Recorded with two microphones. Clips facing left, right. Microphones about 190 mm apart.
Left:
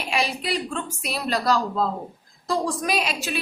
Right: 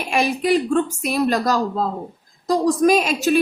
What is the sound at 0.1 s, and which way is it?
A woman's voice, 50° right (ahead or behind).